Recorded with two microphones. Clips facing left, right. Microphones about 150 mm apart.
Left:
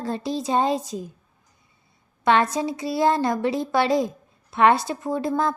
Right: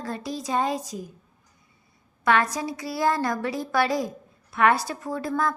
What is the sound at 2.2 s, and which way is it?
A woman's voice, 25° left (ahead or behind).